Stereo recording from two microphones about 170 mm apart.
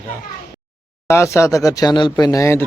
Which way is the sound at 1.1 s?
15° left (ahead or behind).